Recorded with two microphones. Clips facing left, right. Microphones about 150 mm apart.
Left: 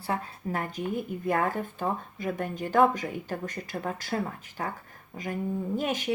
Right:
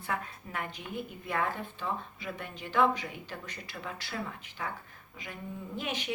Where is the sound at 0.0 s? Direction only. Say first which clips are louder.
Left 5 dB; 35° left (ahead or behind).